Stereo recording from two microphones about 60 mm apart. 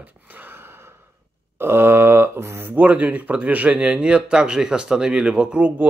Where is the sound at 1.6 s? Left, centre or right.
Right.